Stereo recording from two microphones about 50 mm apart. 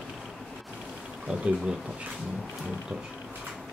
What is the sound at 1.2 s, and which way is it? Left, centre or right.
Speech, right.